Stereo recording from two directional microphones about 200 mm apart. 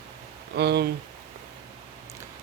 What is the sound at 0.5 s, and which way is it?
Speech, 55° right (ahead or behind).